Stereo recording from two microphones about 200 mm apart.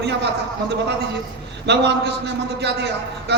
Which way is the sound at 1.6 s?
55° right (ahead or behind).